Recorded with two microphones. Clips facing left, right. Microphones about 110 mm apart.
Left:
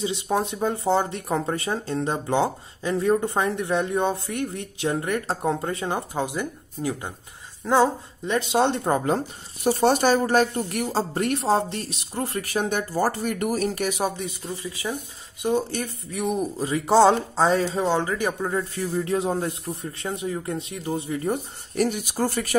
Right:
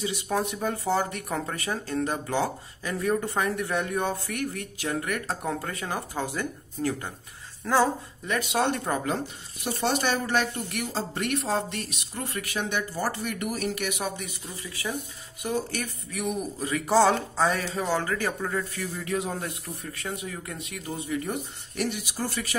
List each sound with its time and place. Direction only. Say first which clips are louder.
0.0 s speech: left 3 dB; 25° left (ahead or behind); by 22.6 s 50° left (ahead or behind)